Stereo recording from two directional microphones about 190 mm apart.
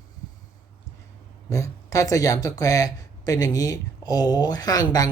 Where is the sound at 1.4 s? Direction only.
15° left (ahead or behind).